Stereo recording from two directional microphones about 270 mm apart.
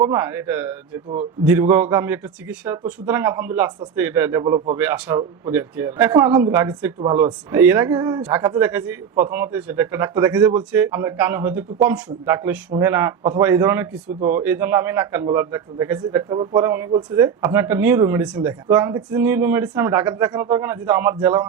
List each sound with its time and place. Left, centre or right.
0.0 s speech: centre
4.8 s speech: centre